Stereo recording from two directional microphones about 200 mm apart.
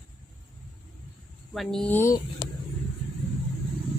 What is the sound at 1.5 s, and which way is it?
Speech, 5° left (ahead or behind).